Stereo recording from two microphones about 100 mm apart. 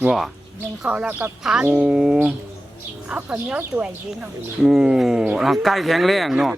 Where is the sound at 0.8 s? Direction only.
10° right (ahead or behind).